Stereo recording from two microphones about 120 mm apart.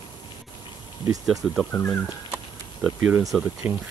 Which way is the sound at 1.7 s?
10° left (ahead or behind).